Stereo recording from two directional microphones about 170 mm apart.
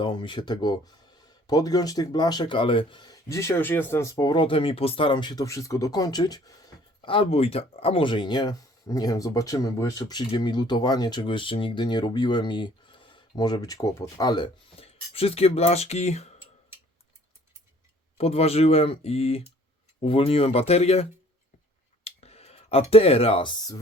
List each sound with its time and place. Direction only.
0.0 s speech: 30° left (ahead or behind)
18.2 s speech: 35° left (ahead or behind)